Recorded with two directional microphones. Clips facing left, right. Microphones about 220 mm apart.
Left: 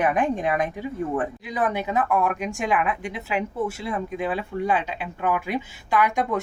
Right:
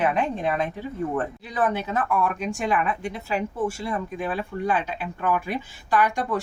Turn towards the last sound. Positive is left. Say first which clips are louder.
# left 1 dB
turn(degrees=20)  # may be behind; listen again after turning